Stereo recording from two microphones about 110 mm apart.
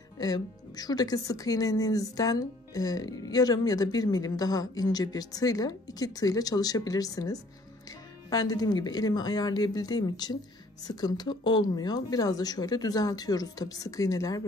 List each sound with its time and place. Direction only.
0.2 s speech: 35° left (ahead or behind)